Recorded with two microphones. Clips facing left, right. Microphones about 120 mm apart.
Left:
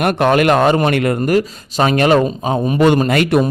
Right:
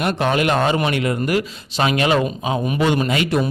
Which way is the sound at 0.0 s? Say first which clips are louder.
Left 6 dB; 55° left (ahead or behind).